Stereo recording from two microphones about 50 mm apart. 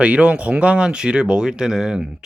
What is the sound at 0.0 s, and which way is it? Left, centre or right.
Speech, right.